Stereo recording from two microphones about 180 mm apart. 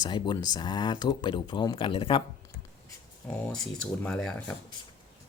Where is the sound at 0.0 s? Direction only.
25° left (ahead or behind).